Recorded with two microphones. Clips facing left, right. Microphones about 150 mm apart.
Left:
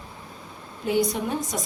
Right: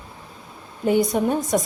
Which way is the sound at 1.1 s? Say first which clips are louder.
Right 7 dB; 50° right (ahead or behind).